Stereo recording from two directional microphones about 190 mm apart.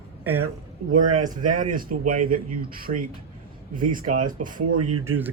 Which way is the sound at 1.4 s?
45° right (ahead or behind).